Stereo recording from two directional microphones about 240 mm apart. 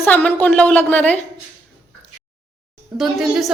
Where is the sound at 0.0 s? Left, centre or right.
Centre.